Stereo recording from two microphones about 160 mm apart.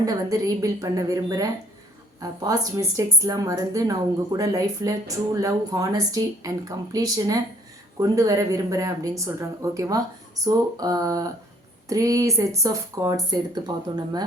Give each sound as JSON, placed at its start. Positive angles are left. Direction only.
{"t": 0.0, "sound": "a woman's voice", "side_deg": -20}